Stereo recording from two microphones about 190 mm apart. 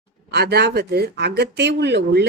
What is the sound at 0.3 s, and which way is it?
A woman's voice, 55° right (ahead or behind).